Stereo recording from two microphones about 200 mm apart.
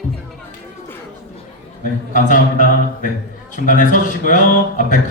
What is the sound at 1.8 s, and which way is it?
Speech, 40° left (ahead or behind).